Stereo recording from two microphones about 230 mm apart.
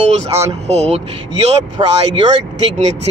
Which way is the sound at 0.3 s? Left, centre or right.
Right.